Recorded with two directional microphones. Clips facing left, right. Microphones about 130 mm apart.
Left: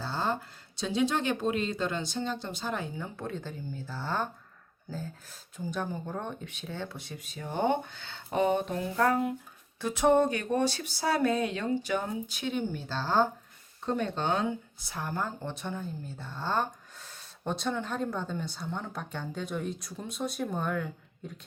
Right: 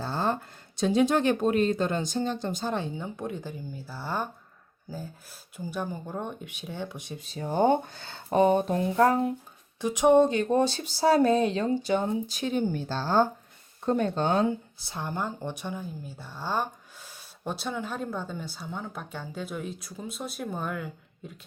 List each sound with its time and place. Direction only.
0.0 s a sound: 50° right (ahead or behind)
0.8 s speech: 50° right (ahead or behind)
2.7 s speech: 25° right (ahead or behind)
3.2 s speech: 15° right (ahead or behind)
7.2 s speech: 30° right (ahead or behind)
9.8 s speech: 15° right (ahead or behind); by 14.4 s 40° right (ahead or behind)
14.8 s a woman's voice: 25° right (ahead or behind); by 21.3 s 5° right (ahead or behind)